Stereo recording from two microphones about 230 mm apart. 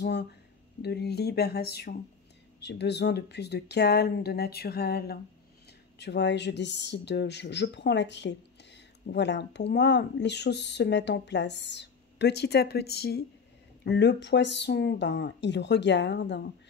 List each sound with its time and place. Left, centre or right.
0.0 s a woman's voice: left